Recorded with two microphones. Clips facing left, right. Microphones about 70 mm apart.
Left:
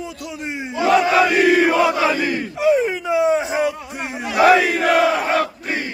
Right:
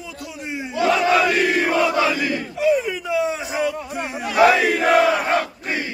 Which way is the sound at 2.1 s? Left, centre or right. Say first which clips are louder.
Left 2 dB; left.